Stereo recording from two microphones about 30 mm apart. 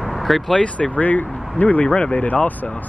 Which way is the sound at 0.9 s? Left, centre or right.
Left.